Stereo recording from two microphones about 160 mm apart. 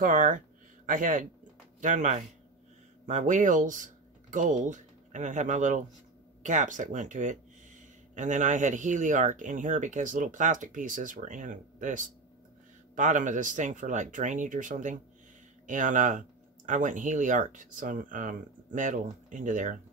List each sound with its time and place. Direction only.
0.0 s a man's voice: 55° right (ahead or behind)